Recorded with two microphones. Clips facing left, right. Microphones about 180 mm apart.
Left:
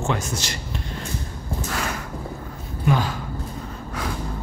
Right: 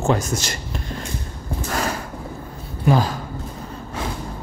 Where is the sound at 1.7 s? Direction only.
40° right (ahead or behind).